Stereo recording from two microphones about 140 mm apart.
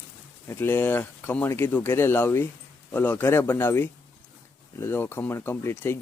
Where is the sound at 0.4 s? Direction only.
15° left (ahead or behind).